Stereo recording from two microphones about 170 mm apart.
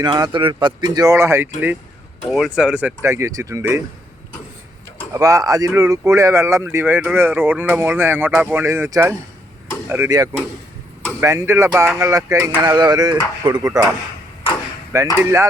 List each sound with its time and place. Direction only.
0.0 s a sound: 25° right (ahead or behind)
0.9 s speech: 15° right (ahead or behind)
2.3 s speech: 5° right (ahead or behind)
5.1 s speech: 20° right (ahead or behind)
11.9 s a sound: 20° right (ahead or behind)
15.2 s speech: 15° right (ahead or behind)